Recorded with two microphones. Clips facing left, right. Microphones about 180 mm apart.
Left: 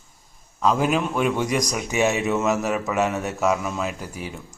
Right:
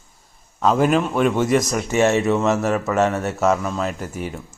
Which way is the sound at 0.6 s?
Centre (ahead or behind).